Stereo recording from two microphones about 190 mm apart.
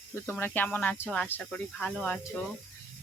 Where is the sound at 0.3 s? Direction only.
10° left (ahead or behind).